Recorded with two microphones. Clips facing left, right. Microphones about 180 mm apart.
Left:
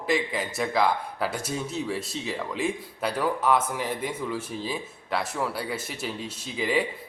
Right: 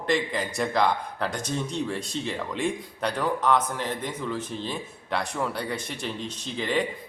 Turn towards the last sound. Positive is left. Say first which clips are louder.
# left 1 dB
turn(degrees=5)  # may be behind; listen again after turning